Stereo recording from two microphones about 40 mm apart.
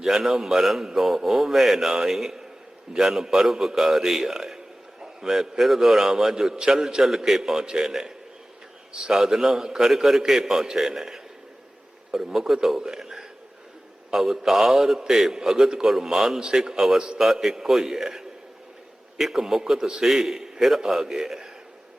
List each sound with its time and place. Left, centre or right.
0.0 s a man's voice: centre
0.9 s mantra: centre
1.9 s a man's voice: centre
3.4 s mantra: centre
3.8 s a man's voice: centre
12.6 s mantra: centre
13.0 s a sound: centre
14.1 s a man's voice: centre